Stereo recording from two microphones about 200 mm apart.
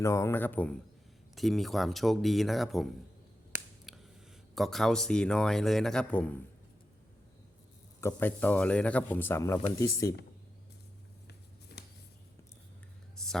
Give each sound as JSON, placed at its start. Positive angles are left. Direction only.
{"t": 0.0, "sound": "speech", "side_deg": 15}
{"t": 4.5, "sound": "speech", "side_deg": 0}
{"t": 8.0, "sound": "speech", "side_deg": 10}
{"t": 11.3, "sound": "a sound", "side_deg": 55}